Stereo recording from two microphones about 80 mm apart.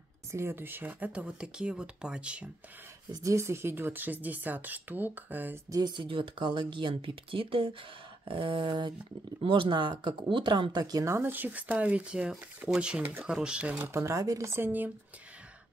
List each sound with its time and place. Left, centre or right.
0.3 s speech: right; by 2.5 s centre
3.1 s speech: right
5.7 s speech: right
5.9 s speech: right
8.3 s a sound: right
9.4 s speech: right
11.1 s speech: right
13.8 s speech: right